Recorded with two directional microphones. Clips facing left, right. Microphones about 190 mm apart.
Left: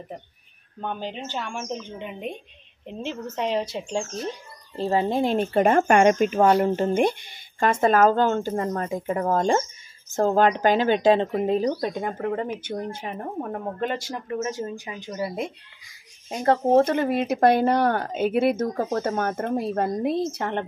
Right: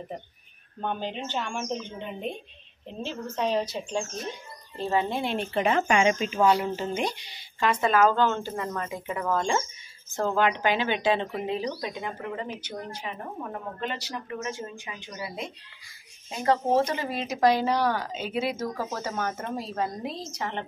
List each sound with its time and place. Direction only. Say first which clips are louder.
0.7 s speech: even; 5° left (ahead or behind)
3.0 s speech: left 1 dB; 20° left (ahead or behind); by 20.6 s 55° left (ahead or behind)